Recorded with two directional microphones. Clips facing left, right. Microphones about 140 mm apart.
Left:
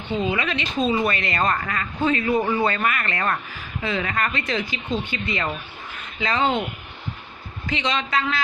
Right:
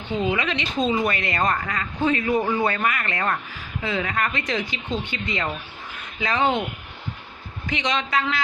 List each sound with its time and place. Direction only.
0.2 s speech: 15° right (ahead or behind)
7.7 s speech: 15° right (ahead or behind)